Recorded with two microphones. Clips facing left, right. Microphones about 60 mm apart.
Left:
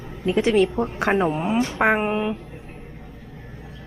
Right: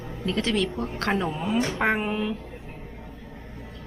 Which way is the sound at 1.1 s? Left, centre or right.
Left.